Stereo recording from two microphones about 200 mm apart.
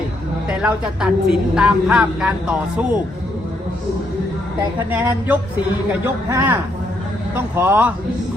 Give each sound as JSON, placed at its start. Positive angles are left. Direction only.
{"t": 0.5, "sound": "a woman's voice", "side_deg": -5}
{"t": 4.9, "sound": "a man's voice", "side_deg": -10}